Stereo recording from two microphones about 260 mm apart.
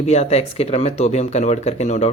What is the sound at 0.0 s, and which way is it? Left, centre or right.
Speech, left.